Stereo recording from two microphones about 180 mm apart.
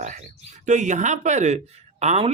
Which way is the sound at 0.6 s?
45° right (ahead or behind).